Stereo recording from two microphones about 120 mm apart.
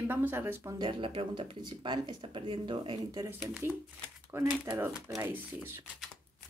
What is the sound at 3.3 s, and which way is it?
Speech, 15° right (ahead or behind).